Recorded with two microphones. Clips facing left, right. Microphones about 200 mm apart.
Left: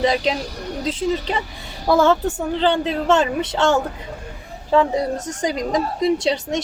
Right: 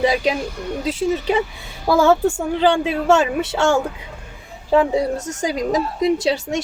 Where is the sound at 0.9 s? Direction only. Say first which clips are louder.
Right 2 dB; 10° right (ahead or behind).